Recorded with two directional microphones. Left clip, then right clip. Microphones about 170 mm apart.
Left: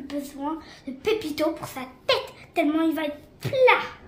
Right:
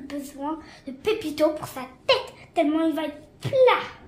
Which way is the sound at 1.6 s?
25° right (ahead or behind).